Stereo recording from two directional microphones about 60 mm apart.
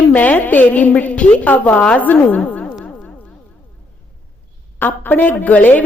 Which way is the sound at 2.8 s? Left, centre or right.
Centre.